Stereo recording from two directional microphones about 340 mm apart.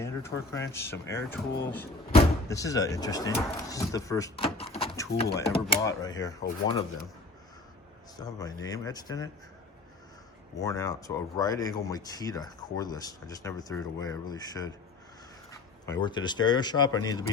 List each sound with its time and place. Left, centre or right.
0.0 s speech: centre
5.4 s speech: left
5.8 s speech: centre
8.1 s speech: centre
10.6 s speech: centre
15.9 s speech: centre